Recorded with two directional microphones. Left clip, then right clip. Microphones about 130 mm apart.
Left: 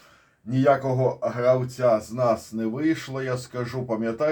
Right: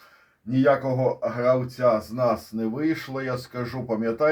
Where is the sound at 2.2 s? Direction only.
25° right (ahead or behind).